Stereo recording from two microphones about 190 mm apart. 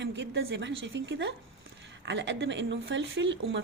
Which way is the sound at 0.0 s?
70° right (ahead or behind).